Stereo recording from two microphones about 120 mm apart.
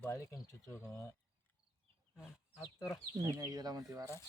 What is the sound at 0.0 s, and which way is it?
Speech, 25° left (ahead or behind).